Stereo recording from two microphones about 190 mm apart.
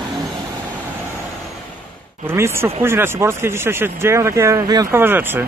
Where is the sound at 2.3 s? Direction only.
15° right (ahead or behind).